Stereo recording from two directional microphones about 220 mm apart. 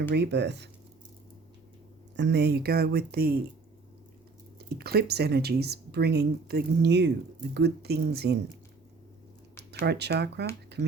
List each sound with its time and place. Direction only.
0.1 s speech: 50° right (ahead or behind)
2.1 s speech: 50° right (ahead or behind)
4.7 s speech: 45° right (ahead or behind)
9.8 s speech: 50° right (ahead or behind)
10.7 s a sound: 50° right (ahead or behind)